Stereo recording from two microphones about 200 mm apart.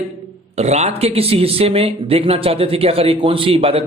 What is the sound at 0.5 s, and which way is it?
Speech, 35° right (ahead or behind).